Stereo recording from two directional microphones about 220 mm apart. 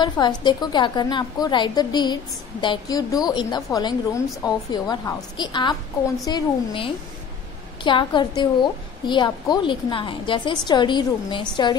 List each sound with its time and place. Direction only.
0.0 s a woman's voice: 20° left (ahead or behind)